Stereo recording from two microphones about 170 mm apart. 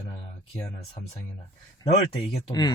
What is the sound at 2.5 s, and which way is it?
Speech, 20° left (ahead or behind).